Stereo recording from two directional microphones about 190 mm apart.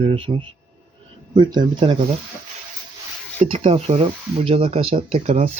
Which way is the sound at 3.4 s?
30° right (ahead or behind).